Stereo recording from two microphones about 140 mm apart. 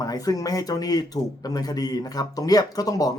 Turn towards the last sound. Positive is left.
turn(degrees=25)  # may be behind; listen again after turning